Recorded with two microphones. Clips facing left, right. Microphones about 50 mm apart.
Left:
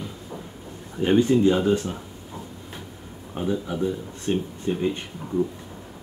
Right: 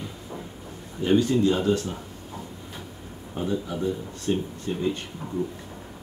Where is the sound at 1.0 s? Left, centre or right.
Left.